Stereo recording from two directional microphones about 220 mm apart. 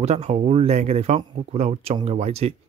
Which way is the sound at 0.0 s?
30° right (ahead or behind).